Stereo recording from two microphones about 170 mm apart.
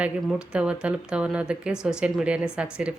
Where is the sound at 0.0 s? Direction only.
5° right (ahead or behind).